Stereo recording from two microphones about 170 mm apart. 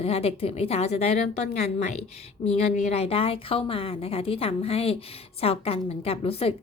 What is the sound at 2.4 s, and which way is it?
Speech, 40° left (ahead or behind).